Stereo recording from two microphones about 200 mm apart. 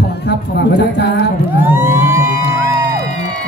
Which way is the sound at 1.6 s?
10° right (ahead or behind).